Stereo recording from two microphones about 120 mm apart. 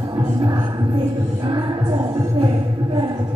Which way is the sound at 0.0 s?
35° right (ahead or behind).